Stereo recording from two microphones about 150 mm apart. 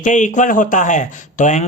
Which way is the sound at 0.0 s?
55° left (ahead or behind).